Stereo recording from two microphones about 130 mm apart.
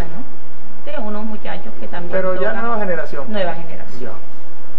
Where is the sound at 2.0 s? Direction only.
25° left (ahead or behind).